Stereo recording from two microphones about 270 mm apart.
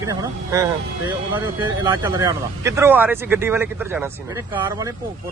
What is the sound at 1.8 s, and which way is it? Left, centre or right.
Speech, centre.